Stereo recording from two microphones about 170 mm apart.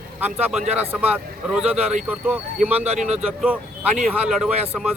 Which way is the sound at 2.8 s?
40° right (ahead or behind).